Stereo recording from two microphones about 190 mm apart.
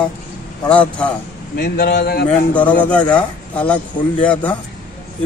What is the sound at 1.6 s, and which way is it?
Speech, 55° left (ahead or behind).